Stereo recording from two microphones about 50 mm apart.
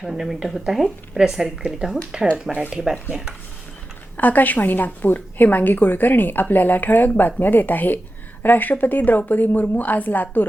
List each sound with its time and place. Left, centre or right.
0.0 s speech: centre
4.2 s a woman's voice: left